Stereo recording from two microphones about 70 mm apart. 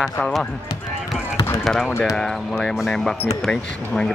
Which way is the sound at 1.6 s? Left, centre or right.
Centre.